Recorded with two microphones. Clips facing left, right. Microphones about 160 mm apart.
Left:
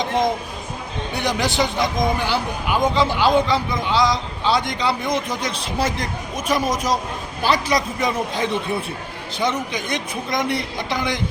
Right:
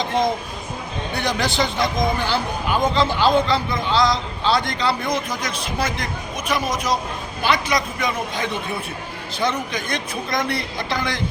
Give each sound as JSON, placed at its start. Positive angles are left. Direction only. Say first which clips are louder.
{"t": 1.1, "sound": "a man's voice", "louder": "left 1 dB", "side_deg": 15}
{"t": 9.3, "sound": "a man's voice", "louder": "left 1 dB", "side_deg": 20}